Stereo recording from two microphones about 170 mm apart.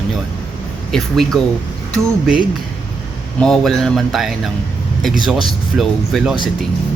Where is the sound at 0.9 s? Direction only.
Centre (ahead or behind).